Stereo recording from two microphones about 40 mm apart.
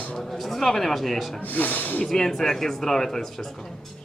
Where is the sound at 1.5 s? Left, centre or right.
Left.